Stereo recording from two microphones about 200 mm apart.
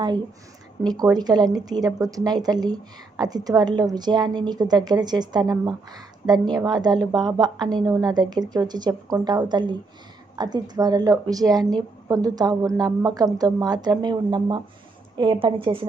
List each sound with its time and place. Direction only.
0.9 s speech: 20° right (ahead or behind)